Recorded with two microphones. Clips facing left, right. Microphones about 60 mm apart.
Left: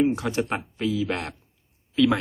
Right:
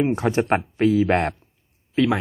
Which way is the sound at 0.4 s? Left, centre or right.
Right.